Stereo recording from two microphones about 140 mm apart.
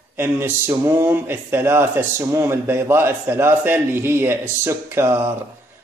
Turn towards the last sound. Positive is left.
turn(degrees=-20)  # may be behind; listen again after turning